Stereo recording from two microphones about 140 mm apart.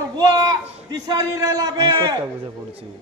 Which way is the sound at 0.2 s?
30° right (ahead or behind).